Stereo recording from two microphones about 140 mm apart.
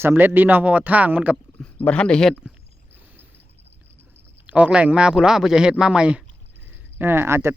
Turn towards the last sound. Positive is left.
turn(degrees=-20)  # may be behind; listen again after turning